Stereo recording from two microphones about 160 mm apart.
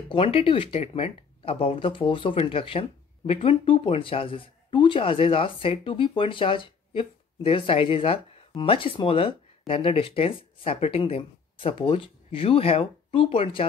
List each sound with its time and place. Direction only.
0.1 s speech: 35° left (ahead or behind)